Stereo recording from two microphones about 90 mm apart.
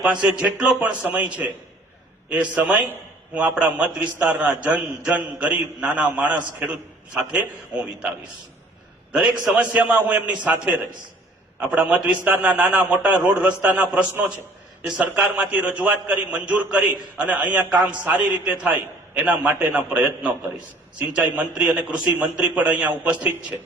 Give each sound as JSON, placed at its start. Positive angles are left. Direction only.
{"t": 0.0, "sound": "a man's voice", "side_deg": -15}
{"t": 9.1, "sound": "a man's voice", "side_deg": -10}
{"t": 11.8, "sound": "a man's voice", "side_deg": -10}